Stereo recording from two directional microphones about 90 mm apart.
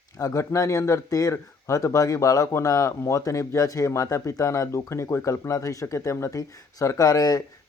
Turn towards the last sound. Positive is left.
turn(degrees=45)  # may be behind; listen again after turning